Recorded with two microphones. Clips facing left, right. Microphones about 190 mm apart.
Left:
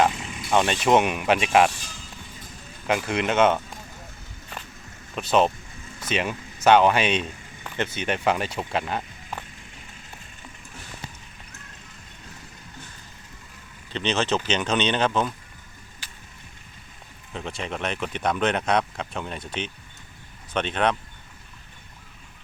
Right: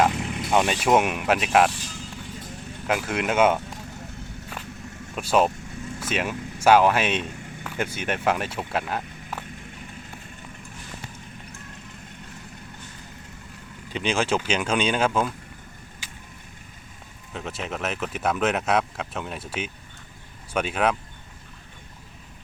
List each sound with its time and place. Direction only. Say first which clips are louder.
0.1 s vehicle: right 6 dB; 65° right (ahead or behind)
0.5 s speech: left 1 dB; 5° right (ahead or behind)
2.8 s speech: left 1 dB; centre (ahead or behind)
5.1 s speech: even; 10° right (ahead or behind)
13.9 s speech: even; 10° right (ahead or behind)
17.3 s speech: even; 5° right (ahead or behind)